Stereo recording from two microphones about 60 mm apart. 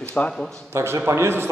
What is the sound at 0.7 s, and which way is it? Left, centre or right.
Speech, right.